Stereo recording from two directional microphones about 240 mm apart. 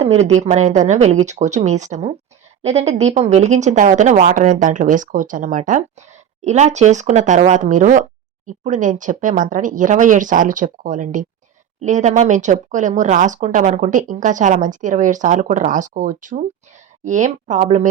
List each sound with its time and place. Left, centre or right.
0.0 s a woman's voice: right